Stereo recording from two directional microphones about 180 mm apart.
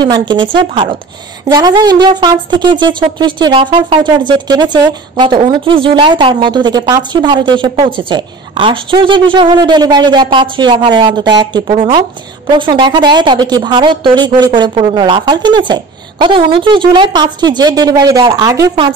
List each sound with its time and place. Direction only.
0.0 s speech: 25° right (ahead or behind)